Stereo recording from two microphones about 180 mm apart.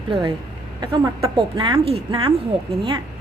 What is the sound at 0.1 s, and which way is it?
A woman's voice, 25° right (ahead or behind).